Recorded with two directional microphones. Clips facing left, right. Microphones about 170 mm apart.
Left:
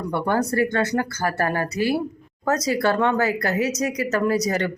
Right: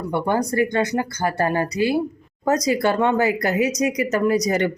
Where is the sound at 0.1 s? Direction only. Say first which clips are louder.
Right 1 dB; 15° right (ahead or behind).